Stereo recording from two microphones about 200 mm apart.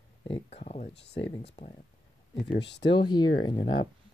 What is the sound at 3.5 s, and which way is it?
Speech, 25° left (ahead or behind).